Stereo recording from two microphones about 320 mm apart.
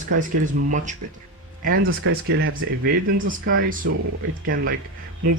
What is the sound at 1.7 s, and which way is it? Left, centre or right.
Speech, right.